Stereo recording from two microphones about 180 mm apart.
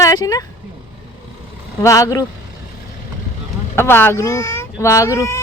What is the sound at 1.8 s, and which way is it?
Speech, 15° left (ahead or behind).